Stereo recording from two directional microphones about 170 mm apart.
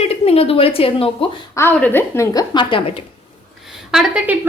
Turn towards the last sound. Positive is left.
turn(degrees=-5)  # may be behind; listen again after turning